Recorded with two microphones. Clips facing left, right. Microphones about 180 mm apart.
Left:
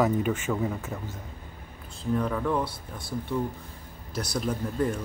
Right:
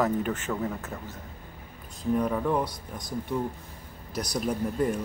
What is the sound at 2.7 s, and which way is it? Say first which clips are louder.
Speech: even; 10° left (ahead or behind).